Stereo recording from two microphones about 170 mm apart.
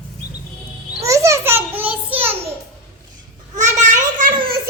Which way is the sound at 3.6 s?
45° right (ahead or behind).